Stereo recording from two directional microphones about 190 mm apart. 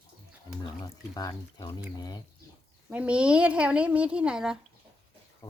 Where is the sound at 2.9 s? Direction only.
5° right (ahead or behind).